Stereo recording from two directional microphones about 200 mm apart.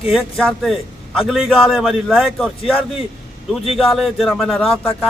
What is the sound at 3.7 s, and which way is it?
A man's voice, centre (ahead or behind).